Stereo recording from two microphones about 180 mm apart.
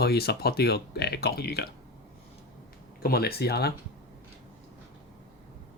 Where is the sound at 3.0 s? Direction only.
60° left (ahead or behind).